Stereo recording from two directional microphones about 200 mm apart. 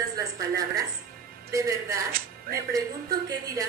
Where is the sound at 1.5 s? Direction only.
15° right (ahead or behind).